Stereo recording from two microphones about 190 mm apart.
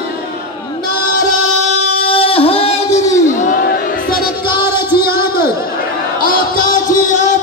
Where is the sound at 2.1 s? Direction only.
30° left (ahead or behind).